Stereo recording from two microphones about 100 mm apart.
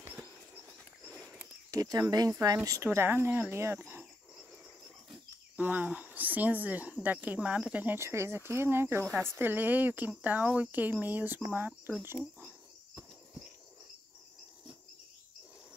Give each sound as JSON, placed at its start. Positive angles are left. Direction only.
{"t": 1.7, "sound": "speech", "side_deg": -40}
{"t": 5.6, "sound": "speech", "side_deg": -15}